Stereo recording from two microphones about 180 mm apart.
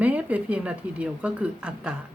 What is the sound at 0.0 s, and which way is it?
A woman's voice, 5° right (ahead or behind).